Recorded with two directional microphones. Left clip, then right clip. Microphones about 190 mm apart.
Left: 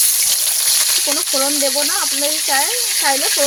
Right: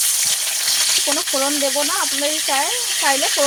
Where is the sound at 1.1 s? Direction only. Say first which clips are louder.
Left 1 dB; 10° left (ahead or behind).